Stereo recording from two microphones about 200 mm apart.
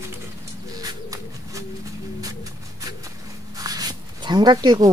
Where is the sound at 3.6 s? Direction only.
20° right (ahead or behind).